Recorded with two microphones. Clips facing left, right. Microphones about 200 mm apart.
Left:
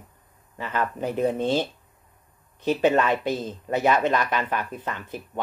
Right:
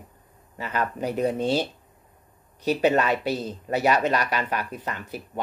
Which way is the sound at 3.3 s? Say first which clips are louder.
Even; 40° right (ahead or behind).